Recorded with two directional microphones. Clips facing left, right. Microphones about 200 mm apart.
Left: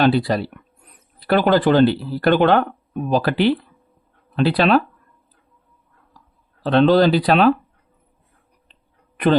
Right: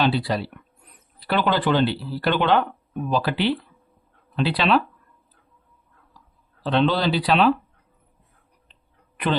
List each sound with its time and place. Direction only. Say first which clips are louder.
0.0 s speech: left 5 dB; 50° left (ahead or behind)
6.6 s speech: left 7 dB; 45° left (ahead or behind)